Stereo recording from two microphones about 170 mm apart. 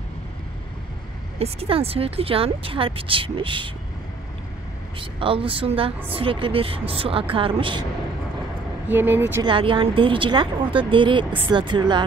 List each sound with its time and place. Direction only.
1.4 s a woman's voice: 35° right (ahead or behind)
5.2 s a woman's voice: 30° right (ahead or behind)
8.8 s speech: 10° right (ahead or behind)
9.4 s a woman's voice: 30° right (ahead or behind)